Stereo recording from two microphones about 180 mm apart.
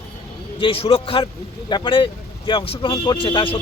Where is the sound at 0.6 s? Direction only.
30° left (ahead or behind).